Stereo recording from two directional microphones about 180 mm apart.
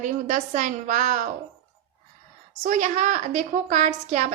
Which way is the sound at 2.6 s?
40° right (ahead or behind).